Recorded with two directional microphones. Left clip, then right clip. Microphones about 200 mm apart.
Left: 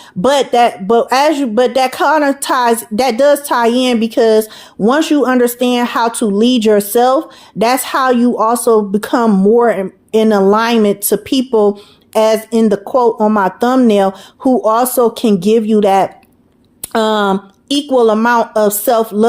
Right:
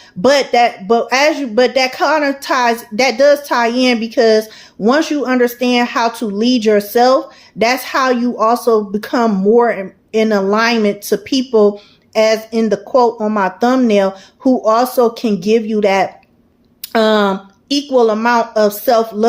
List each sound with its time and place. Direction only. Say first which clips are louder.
0.2 s speech: left 1 dB; 45° left (ahead or behind)